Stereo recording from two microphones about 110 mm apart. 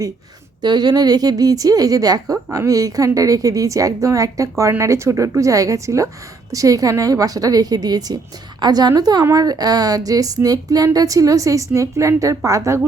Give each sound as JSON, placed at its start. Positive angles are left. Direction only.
{"t": 0.6, "sound": "a woman's voice", "side_deg": -40}